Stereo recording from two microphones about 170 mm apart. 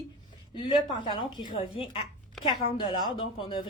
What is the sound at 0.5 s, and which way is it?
A woman's voice, 30° left (ahead or behind).